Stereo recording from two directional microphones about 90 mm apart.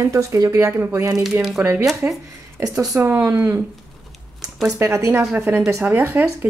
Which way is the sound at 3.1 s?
20° right (ahead or behind).